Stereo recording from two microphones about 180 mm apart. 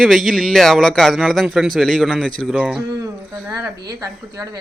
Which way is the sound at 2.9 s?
15° right (ahead or behind).